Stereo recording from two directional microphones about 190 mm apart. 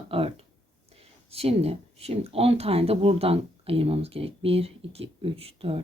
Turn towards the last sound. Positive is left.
turn(degrees=-30)  # may be behind; listen again after turning